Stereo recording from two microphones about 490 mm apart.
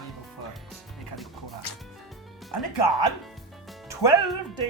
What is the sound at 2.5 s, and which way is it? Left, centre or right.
Speech, left.